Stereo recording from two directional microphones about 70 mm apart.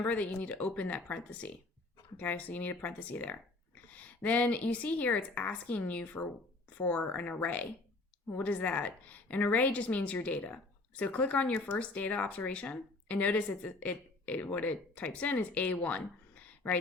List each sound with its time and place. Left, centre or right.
0.0 s speech: left